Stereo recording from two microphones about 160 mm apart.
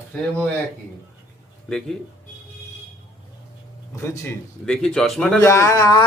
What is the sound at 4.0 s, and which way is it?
Speech, 15° left (ahead or behind).